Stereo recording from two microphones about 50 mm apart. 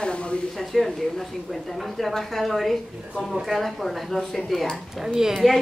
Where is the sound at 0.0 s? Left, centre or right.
Centre.